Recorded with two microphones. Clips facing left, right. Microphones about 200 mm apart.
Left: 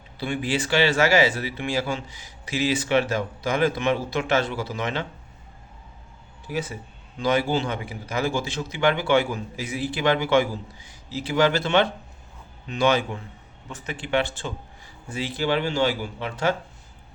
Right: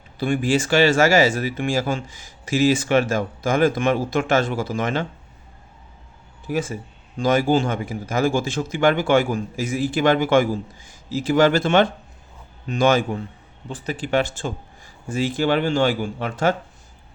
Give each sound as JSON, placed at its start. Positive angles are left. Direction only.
{"t": 0.2, "sound": "speech", "side_deg": -45}
{"t": 6.5, "sound": "speech", "side_deg": -45}
{"t": 13.7, "sound": "speech", "side_deg": -35}